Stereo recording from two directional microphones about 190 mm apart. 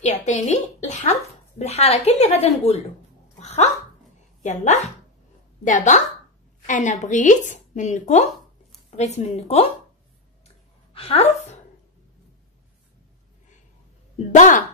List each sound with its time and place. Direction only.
0.0 s a sound: 35° left (ahead or behind)
1.6 s speech: 35° left (ahead or behind)
3.3 s dog: 35° left (ahead or behind)
4.5 s speech: 35° left (ahead or behind)
10.4 s a sound: 30° left (ahead or behind)
14.1 s a woman's voice: 40° left (ahead or behind)